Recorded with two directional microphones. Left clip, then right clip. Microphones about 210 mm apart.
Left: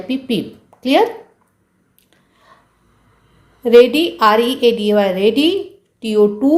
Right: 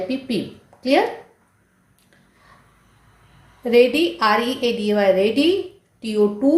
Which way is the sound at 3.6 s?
35° left (ahead or behind).